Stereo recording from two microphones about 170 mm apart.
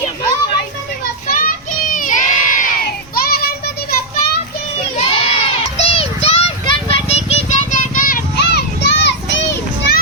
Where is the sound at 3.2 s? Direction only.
60° left (ahead or behind).